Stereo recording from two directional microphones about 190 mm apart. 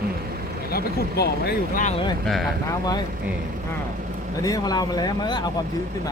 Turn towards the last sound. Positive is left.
turn(degrees=20)  # may be behind; listen again after turning